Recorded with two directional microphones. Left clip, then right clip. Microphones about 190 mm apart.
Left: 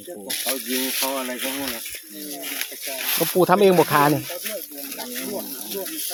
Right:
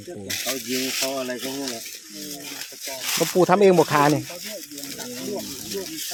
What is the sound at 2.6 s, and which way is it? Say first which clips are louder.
Speech: left 5 dB; 20° left (ahead or behind).